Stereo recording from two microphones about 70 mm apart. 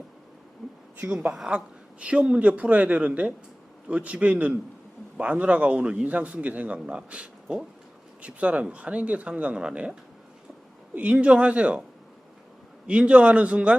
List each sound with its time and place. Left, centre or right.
0.6 s a sound: centre
0.9 s a man's voice: right
12.9 s a man's voice: centre